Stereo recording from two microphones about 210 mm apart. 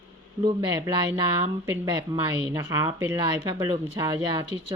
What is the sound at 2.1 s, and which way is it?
Speech, 15° right (ahead or behind).